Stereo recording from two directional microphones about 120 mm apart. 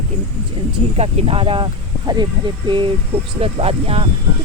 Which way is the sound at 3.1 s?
55° right (ahead or behind).